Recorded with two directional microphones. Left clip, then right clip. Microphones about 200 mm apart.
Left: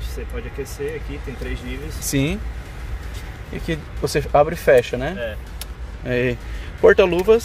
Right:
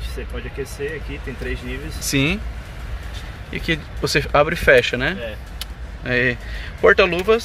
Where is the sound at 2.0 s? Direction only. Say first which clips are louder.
Right 3 dB; 15° left (ahead or behind).